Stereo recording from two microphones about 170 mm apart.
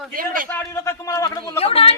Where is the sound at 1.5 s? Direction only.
35° left (ahead or behind).